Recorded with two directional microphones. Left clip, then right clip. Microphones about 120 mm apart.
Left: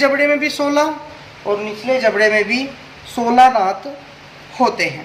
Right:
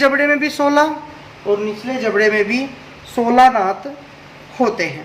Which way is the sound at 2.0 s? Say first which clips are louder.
Even; centre (ahead or behind).